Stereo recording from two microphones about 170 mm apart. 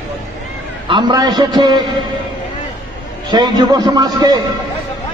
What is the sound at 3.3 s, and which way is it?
Speech, 25° right (ahead or behind).